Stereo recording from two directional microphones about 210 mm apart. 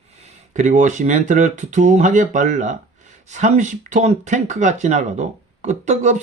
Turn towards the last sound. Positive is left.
turn(degrees=-35)  # may be behind; listen again after turning